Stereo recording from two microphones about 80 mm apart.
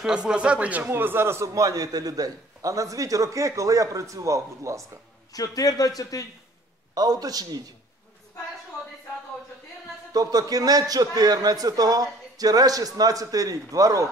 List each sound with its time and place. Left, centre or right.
0.0 s speech: centre; by 1.5 s right
1.5 s a man's voice: right
5.3 s a man's voice: left
6.9 s a man's voice: right
10.1 s a man's voice: right